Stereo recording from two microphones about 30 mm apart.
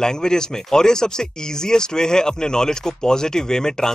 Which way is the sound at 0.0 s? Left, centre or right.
Left.